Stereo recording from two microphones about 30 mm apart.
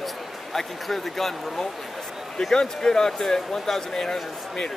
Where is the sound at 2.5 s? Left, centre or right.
Centre.